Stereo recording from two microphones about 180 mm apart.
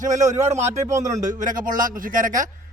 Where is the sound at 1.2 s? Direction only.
45° right (ahead or behind).